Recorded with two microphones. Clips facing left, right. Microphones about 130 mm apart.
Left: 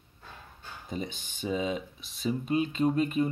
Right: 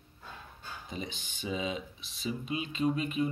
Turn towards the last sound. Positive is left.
turn(degrees=45)  # may be behind; listen again after turning